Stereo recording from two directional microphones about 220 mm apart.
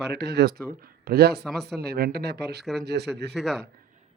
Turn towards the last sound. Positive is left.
turn(degrees=0)  # may be behind; listen again after turning